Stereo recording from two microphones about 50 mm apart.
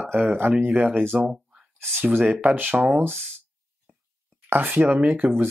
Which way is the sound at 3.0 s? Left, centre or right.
Right.